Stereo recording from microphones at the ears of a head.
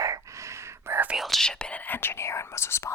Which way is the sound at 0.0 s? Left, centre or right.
Right.